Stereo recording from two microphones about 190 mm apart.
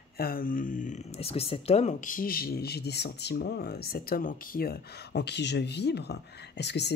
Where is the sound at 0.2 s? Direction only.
50° left (ahead or behind).